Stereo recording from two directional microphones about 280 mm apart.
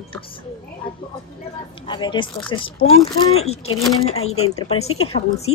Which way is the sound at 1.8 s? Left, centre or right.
Centre.